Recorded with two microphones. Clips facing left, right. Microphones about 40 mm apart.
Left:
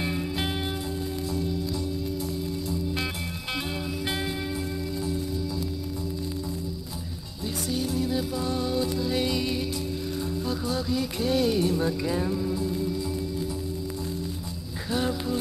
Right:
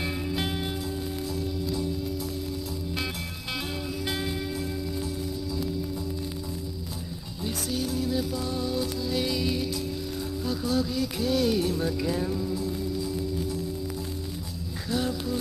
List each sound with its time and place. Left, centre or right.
7.7 s music: centre
8.1 s music: left
8.5 s music: left
9.4 s music: centre
15.0 s a sound: left